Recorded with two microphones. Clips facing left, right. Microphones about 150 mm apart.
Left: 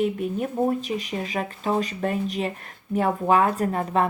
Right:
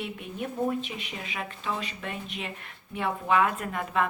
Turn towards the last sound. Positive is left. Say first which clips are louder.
# left 6 dB
turn(degrees=35)  # may be behind; listen again after turning